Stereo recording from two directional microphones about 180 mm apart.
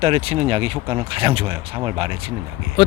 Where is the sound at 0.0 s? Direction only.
30° right (ahead or behind).